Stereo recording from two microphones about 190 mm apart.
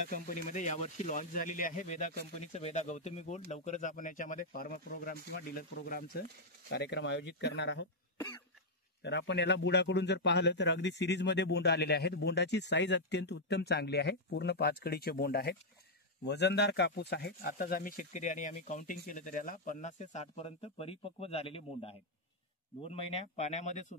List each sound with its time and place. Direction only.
0.0 s speech: 40° left (ahead or behind)
6.7 s speech: 60° left (ahead or behind)
9.0 s speech: 65° left (ahead or behind); by 24.0 s 35° left (ahead or behind)